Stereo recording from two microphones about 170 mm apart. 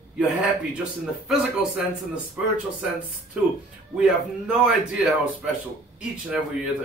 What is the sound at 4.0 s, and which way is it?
A man's voice, 5° right (ahead or behind).